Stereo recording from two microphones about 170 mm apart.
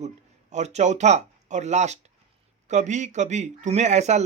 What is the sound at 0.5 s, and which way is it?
Speech, 40° right (ahead or behind).